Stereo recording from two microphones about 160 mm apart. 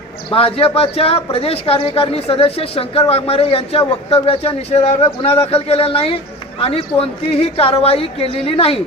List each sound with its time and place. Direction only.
0.3 s speech: 35° left (ahead or behind)